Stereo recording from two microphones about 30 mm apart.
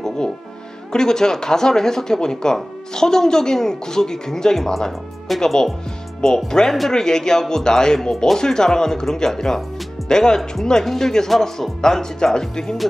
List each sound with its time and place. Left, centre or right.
0.9 s speech: left